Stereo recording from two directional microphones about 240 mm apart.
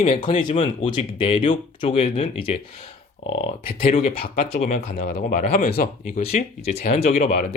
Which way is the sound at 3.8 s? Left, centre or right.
Left.